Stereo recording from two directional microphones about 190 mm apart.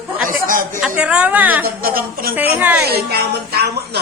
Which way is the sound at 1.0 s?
5° right (ahead or behind).